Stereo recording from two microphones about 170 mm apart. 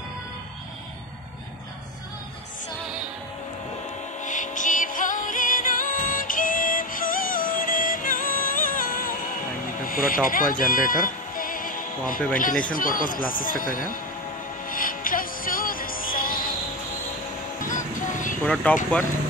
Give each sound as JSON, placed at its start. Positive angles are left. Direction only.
{"t": 4.2, "sound": "music", "side_deg": 45}
{"t": 9.8, "sound": "speech", "side_deg": 55}
{"t": 14.7, "sound": "music", "side_deg": 55}
{"t": 17.7, "sound": "music", "side_deg": 50}
{"t": 18.4, "sound": "speech", "side_deg": 5}